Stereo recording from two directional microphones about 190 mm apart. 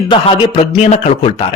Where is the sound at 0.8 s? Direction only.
35° left (ahead or behind).